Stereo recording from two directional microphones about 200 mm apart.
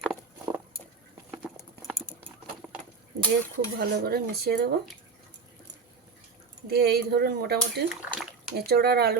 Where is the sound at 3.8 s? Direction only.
50° right (ahead or behind).